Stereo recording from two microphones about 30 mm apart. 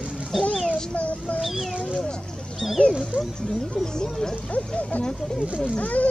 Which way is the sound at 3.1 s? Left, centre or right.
Right.